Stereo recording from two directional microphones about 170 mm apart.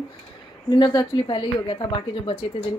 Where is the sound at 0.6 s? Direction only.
25° left (ahead or behind).